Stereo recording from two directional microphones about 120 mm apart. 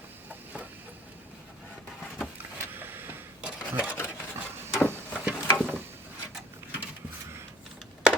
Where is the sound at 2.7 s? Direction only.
15° right (ahead or behind).